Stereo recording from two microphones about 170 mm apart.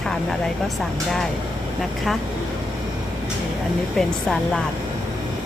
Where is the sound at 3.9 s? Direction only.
5° left (ahead or behind).